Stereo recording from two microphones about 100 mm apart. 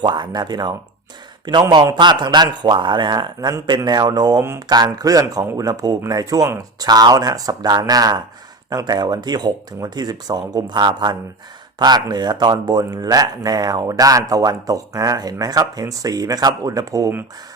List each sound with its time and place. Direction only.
0.0 s speech: 45° right (ahead or behind)
2.0 s speech: 50° right (ahead or behind)